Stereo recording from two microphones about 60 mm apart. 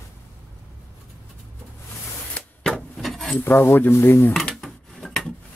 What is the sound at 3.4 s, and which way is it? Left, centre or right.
Speech, left.